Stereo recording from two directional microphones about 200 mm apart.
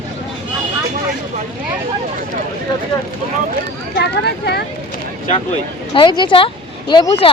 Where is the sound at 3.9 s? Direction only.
55° left (ahead or behind).